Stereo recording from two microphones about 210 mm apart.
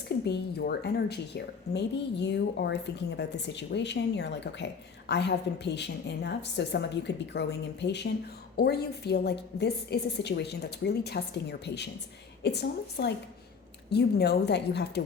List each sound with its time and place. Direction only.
0.3 s a woman's voice: 50° left (ahead or behind)